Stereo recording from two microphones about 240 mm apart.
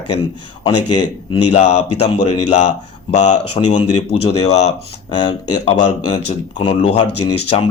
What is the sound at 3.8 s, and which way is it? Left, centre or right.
Speech, left.